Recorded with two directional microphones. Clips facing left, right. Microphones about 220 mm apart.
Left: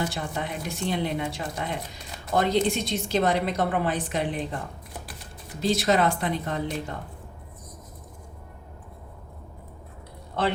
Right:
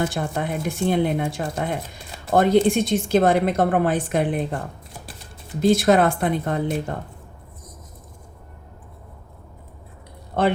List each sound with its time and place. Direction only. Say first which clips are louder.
0.0 s a woman's voice: right 5 dB; 50° right (ahead or behind)